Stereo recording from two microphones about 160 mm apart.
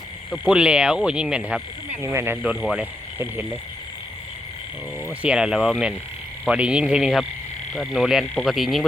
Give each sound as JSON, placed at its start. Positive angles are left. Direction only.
{"t": 0.3, "sound": "speech", "side_deg": -5}
{"t": 5.2, "sound": "speech", "side_deg": -5}